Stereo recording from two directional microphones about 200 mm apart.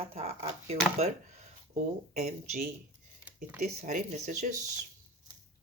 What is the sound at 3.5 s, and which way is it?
Speech, 35° right (ahead or behind).